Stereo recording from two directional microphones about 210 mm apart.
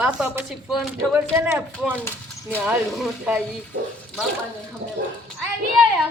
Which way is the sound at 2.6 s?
5° right (ahead or behind).